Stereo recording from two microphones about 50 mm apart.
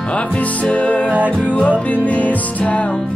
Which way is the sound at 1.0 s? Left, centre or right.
Right.